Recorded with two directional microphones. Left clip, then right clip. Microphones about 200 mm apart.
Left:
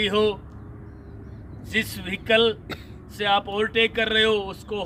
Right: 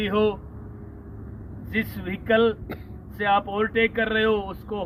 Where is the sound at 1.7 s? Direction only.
15° left (ahead or behind).